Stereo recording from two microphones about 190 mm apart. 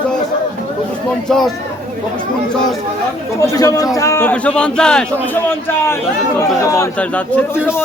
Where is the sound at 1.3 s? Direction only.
Centre (ahead or behind).